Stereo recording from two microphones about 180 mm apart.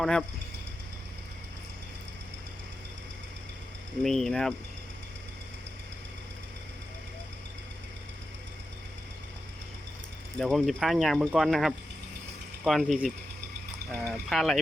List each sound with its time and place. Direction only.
0.0 s speech: 5° left (ahead or behind)
4.0 s speech: centre (ahead or behind)
10.3 s speech: centre (ahead or behind)